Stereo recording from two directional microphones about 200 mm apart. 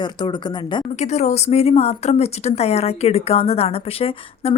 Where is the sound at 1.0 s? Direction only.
35° left (ahead or behind).